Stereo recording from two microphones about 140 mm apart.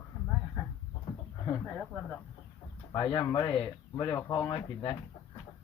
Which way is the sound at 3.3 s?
35° left (ahead or behind).